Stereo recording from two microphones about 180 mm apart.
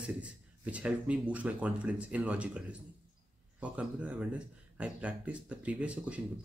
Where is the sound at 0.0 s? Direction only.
5° right (ahead or behind).